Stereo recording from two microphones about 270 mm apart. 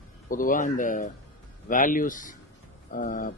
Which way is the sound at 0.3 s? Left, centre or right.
Left.